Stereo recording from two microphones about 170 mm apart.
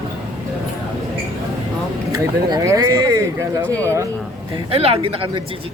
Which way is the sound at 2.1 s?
20° right (ahead or behind).